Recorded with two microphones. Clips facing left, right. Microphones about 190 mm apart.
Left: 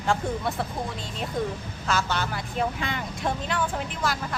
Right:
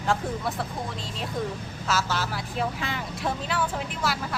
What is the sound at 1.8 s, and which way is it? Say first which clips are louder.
Speech: left 1 dB; 5° right (ahead or behind).